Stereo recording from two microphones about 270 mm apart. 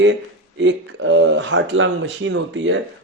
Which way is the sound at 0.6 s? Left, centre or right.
Right.